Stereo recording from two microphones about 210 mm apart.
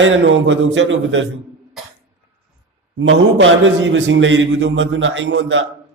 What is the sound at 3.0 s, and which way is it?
Speech, 65° right (ahead or behind).